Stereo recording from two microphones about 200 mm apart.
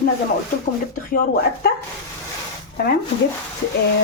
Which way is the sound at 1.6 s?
50° left (ahead or behind).